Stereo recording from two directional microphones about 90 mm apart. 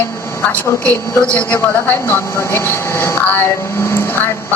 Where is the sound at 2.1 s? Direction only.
25° left (ahead or behind).